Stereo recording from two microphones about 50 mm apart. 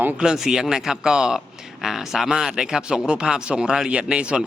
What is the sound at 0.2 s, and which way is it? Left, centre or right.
Speech, centre.